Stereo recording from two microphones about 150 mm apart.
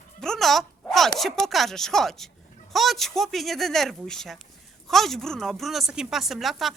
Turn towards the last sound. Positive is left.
turn(degrees=0)  # may be behind; listen again after turning